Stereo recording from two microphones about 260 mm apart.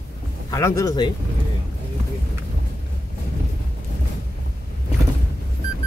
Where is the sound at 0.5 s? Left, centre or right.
Centre.